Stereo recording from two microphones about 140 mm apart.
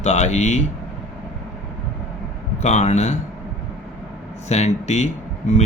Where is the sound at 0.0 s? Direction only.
55° left (ahead or behind).